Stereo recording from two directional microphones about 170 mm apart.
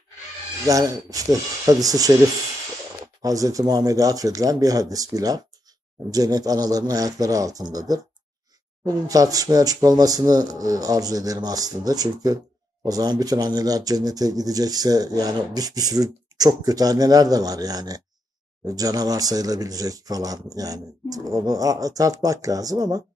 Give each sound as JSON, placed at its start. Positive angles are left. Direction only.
{"t": 0.7, "sound": "speech", "side_deg": -20}
{"t": 3.2, "sound": "speech", "side_deg": -20}
{"t": 8.8, "sound": "speech", "side_deg": -20}